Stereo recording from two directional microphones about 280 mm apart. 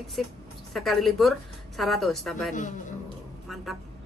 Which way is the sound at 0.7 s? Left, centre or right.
Centre.